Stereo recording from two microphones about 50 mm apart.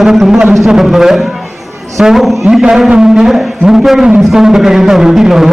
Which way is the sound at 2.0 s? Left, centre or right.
Centre.